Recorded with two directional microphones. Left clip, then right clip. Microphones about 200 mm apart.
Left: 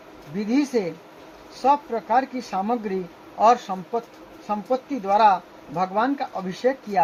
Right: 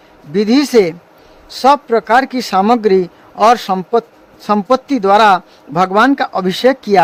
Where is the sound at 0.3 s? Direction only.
50° right (ahead or behind).